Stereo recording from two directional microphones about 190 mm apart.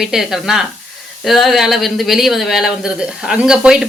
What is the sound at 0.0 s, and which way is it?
Speech, centre (ahead or behind).